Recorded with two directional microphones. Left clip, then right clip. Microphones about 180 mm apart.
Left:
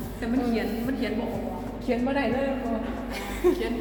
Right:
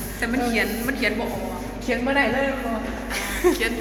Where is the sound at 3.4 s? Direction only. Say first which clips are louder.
Right 3 dB; 10° right (ahead or behind).